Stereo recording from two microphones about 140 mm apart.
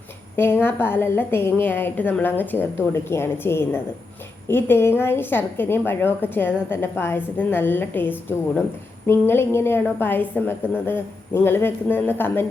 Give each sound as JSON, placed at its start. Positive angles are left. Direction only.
{"t": 0.3, "sound": "a woman's voice", "side_deg": 15}